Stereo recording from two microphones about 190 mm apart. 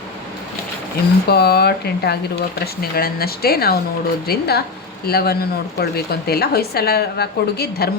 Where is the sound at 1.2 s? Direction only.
55° left (ahead or behind).